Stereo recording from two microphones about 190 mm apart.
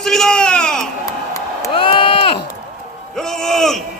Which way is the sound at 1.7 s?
25° left (ahead or behind).